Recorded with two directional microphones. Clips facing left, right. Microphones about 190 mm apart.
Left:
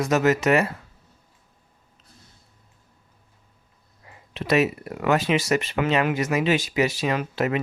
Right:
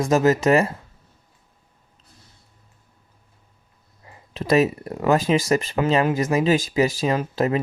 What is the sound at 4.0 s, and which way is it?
Speech, 35° right (ahead or behind).